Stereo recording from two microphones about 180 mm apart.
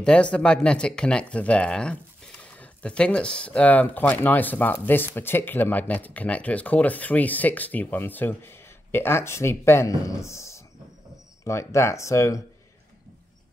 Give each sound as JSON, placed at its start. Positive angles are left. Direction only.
{"t": 0.0, "sound": "speech", "side_deg": 5}